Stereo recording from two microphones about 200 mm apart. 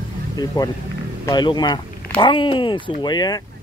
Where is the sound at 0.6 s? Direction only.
20° left (ahead or behind).